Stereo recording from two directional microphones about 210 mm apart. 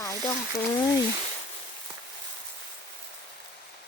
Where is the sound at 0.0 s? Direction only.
15° left (ahead or behind).